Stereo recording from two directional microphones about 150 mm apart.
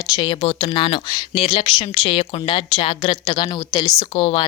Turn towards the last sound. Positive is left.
turn(degrees=40)  # may be behind; listen again after turning